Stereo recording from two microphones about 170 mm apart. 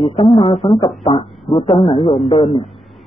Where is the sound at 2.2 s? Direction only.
30° left (ahead or behind).